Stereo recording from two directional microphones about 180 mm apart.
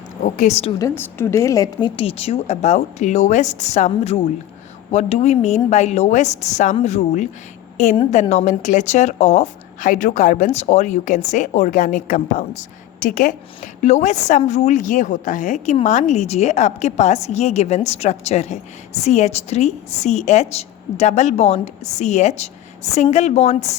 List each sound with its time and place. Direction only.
0.3 s a woman's voice: 40° left (ahead or behind)
0.8 s a woman's voice: 15° left (ahead or behind); by 23.7 s 35° left (ahead or behind)